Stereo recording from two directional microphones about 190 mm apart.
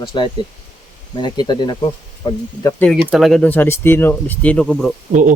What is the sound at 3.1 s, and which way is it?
Speech, centre (ahead or behind).